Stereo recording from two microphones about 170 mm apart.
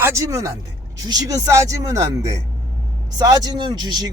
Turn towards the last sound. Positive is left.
turn(degrees=-25)  # may be behind; listen again after turning